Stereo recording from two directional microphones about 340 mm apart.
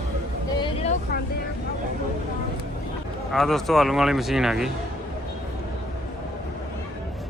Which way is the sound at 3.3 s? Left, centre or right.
Centre.